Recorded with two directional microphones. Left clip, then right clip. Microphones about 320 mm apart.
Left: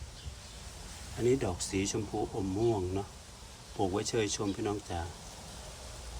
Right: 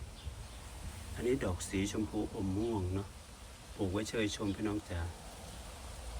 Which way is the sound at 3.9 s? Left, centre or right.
Centre.